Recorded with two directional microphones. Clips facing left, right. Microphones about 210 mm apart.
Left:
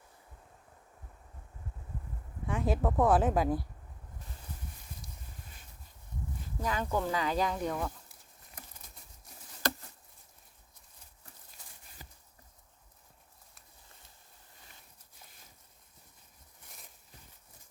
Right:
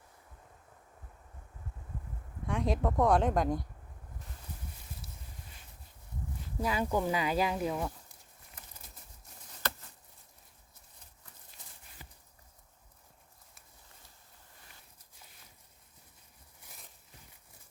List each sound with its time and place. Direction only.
2.5 s speech: 5° left (ahead or behind)
6.6 s speech: 10° right (ahead or behind)
12.0 s a sound: 40° left (ahead or behind)